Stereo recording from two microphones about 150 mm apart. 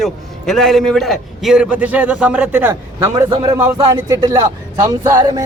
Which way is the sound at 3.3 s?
30° right (ahead or behind).